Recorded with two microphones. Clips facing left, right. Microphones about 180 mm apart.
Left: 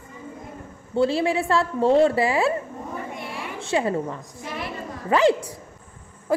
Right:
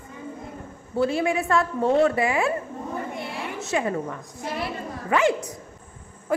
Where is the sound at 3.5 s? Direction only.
30° left (ahead or behind).